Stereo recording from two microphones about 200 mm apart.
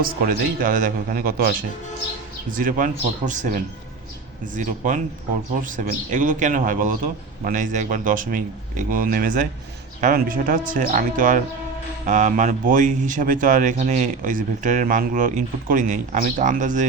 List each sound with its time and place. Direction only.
0.0 s a man's voice: 45° right (ahead or behind)